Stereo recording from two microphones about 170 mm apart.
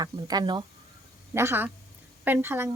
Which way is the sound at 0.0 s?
25° right (ahead or behind).